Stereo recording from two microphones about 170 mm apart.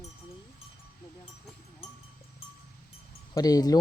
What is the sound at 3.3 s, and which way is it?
Livestock, 20° left (ahead or behind).